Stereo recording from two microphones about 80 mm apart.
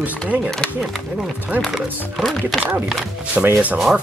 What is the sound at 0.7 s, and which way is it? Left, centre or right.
Sanding, centre.